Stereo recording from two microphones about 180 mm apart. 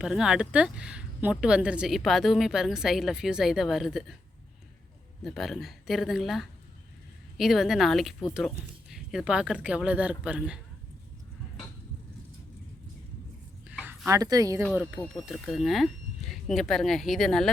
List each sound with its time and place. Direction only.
0.0 s speech: 5° right (ahead or behind)
5.2 s speech: centre (ahead or behind)
14.1 s speech: 20° right (ahead or behind)
14.6 s speech: 5° right (ahead or behind)